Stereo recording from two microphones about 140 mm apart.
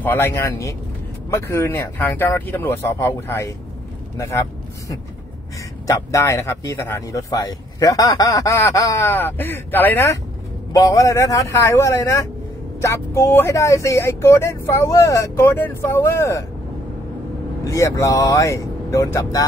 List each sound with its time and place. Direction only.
0.0 s speech: 15° left (ahead or behind)
10.7 s speech: 25° left (ahead or behind)
17.6 s speech: 25° left (ahead or behind)